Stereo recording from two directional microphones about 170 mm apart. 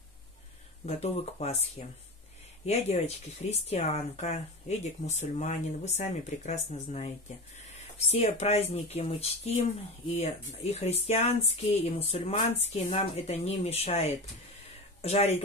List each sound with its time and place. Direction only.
0.8 s speech: 40° left (ahead or behind)